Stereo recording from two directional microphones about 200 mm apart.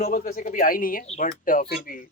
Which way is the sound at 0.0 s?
45° left (ahead or behind).